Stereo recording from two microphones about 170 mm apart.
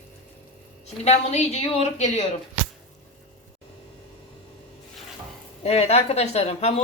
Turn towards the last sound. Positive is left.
turn(degrees=40)  # may be behind; listen again after turning